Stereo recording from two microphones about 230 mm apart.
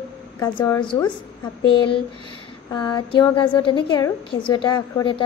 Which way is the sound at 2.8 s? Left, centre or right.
Centre.